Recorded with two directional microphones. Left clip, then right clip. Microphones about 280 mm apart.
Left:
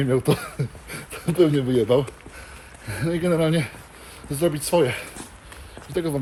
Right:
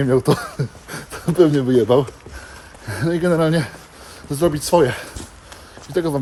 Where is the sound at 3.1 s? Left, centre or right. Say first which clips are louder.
Right 4 dB; centre.